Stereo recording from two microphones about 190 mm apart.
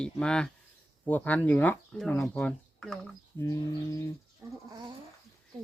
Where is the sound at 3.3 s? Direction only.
15° left (ahead or behind).